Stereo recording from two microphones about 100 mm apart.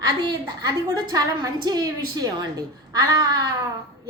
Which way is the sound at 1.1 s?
40° right (ahead or behind).